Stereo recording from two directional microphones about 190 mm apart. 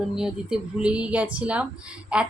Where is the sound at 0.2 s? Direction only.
5° right (ahead or behind).